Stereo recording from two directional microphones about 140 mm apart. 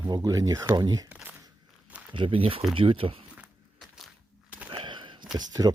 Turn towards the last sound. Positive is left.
turn(degrees=-25)  # may be behind; listen again after turning